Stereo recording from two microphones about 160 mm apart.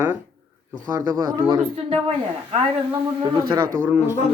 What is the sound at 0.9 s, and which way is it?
A man's voice, 25° right (ahead or behind).